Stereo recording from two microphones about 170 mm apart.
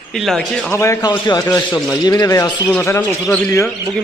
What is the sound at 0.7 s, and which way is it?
A man's voice, 15° left (ahead or behind).